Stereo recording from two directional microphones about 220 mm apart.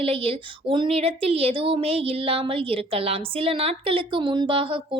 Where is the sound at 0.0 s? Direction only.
25° right (ahead or behind).